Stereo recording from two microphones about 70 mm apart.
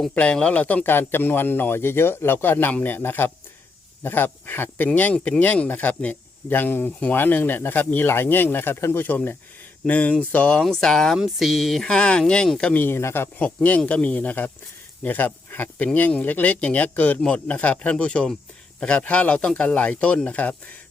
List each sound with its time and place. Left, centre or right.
0.1 s speech: centre
12.7 s speech: left
13.4 s speech: centre